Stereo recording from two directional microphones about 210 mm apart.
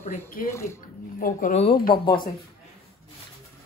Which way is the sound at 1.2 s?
35° left (ahead or behind).